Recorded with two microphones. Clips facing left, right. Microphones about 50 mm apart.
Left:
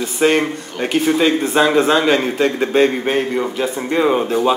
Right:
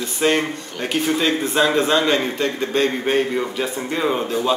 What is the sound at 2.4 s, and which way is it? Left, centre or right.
Speech, left.